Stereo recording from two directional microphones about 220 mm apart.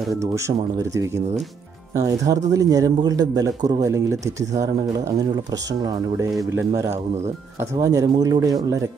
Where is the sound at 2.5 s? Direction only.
15° right (ahead or behind).